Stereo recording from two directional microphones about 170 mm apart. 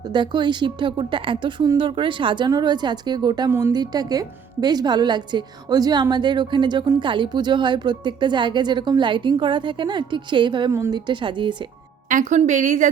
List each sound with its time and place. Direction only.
0.1 s speech: 25° right (ahead or behind)
12.0 s a woman's voice: 45° right (ahead or behind)